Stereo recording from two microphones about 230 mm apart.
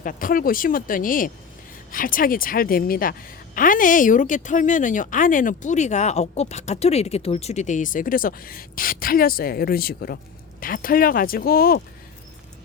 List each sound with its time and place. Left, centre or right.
0.0 s a woman's voice: left